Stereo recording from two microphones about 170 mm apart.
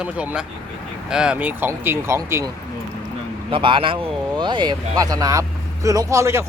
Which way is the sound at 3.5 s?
30° right (ahead or behind).